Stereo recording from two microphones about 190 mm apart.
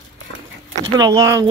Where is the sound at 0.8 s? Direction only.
20° right (ahead or behind).